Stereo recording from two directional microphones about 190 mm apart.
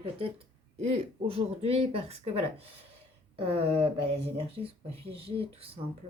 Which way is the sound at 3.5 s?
30° right (ahead or behind).